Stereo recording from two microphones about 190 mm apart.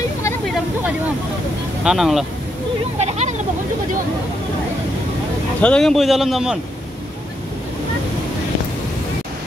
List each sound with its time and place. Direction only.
1.9 s a man's voice: centre (ahead or behind)
3.0 s speech: 35° right (ahead or behind)
5.6 s a man's voice: 5° left (ahead or behind)